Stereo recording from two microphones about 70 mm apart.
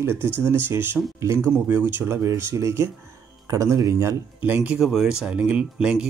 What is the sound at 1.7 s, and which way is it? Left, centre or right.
Speech, right.